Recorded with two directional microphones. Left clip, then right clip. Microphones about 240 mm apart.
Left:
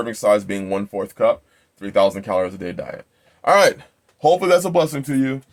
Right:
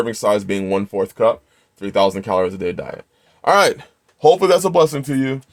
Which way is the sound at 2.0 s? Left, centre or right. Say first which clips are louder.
Right 2 dB; right.